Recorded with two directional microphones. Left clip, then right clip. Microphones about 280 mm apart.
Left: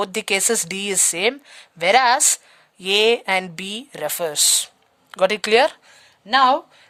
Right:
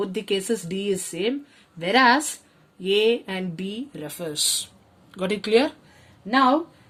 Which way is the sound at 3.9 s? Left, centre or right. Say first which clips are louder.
Left 8 dB; left.